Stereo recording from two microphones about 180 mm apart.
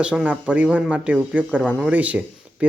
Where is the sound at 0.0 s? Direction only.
5° right (ahead or behind).